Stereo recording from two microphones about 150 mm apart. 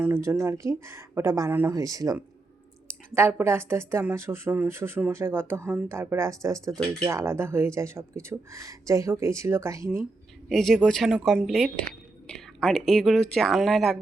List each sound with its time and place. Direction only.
0.0 s speech: 15° right (ahead or behind)
10.5 s speech: centre (ahead or behind)